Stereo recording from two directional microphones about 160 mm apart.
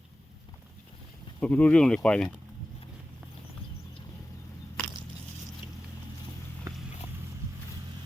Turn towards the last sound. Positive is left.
turn(degrees=-20)  # may be behind; listen again after turning